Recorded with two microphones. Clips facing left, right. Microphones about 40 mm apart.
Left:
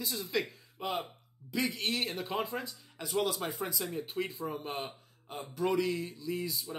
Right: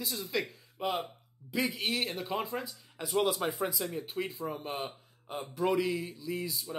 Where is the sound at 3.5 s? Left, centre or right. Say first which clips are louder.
Right 2 dB; centre.